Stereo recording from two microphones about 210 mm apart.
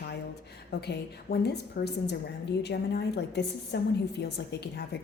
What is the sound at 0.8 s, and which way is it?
A woman's voice, 50° left (ahead or behind).